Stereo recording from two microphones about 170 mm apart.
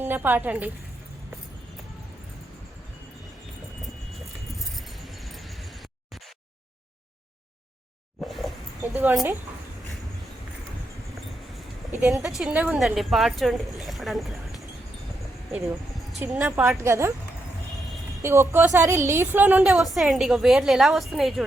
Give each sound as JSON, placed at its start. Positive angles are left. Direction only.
{"t": 0.0, "sound": "a woman's voice", "side_deg": -10}
{"t": 8.2, "sound": "a sound", "side_deg": 0}
{"t": 8.8, "sound": "a sound", "side_deg": -10}
{"t": 11.9, "sound": "a woman's voice", "side_deg": -10}
{"t": 16.1, "sound": "a woman's voice", "side_deg": -10}
{"t": 18.2, "sound": "a woman's voice", "side_deg": -15}